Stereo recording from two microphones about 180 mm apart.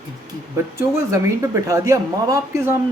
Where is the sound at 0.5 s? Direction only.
15° right (ahead or behind).